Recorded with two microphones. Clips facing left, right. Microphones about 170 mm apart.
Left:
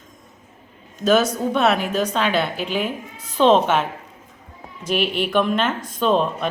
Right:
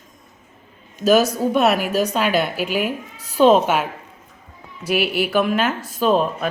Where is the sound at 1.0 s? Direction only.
10° right (ahead or behind).